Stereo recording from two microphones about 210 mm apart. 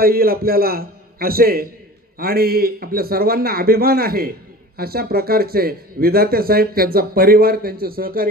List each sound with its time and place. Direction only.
0.0 s speech: 45° right (ahead or behind)